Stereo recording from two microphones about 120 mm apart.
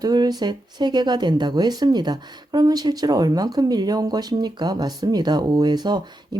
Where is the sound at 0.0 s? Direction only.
35° right (ahead or behind).